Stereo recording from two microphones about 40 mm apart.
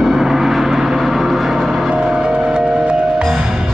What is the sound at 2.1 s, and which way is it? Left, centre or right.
Music, centre.